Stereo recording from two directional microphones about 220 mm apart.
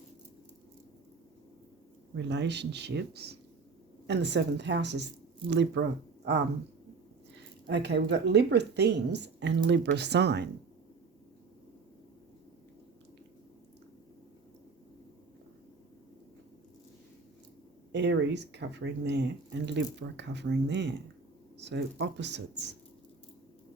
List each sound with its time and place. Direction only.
2.1 s speech: 50° right (ahead or behind)
7.7 s speech: 50° right (ahead or behind)
17.9 s speech: 50° right (ahead or behind)